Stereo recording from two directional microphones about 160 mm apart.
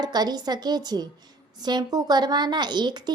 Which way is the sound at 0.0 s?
25° right (ahead or behind).